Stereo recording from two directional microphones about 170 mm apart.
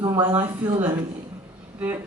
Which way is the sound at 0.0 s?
25° right (ahead or behind).